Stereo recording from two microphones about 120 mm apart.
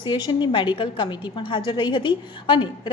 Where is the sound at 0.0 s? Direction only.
40° left (ahead or behind).